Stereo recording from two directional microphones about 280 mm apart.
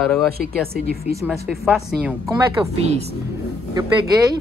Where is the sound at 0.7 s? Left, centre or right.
Right.